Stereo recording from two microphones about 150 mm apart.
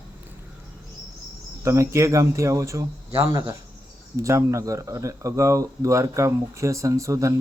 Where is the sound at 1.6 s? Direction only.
20° right (ahead or behind).